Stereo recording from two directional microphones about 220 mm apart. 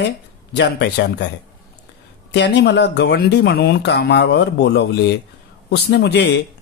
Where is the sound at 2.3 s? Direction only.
50° left (ahead or behind).